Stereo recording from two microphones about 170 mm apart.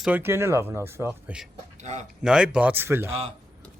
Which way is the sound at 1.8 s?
45° right (ahead or behind).